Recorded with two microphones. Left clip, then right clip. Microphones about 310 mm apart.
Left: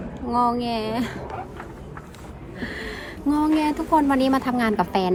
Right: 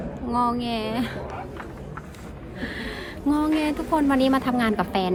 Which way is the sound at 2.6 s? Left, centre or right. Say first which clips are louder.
Left 1 dB; centre.